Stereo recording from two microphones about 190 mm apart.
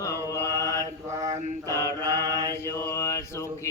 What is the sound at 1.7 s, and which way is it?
Speech, 15° left (ahead or behind).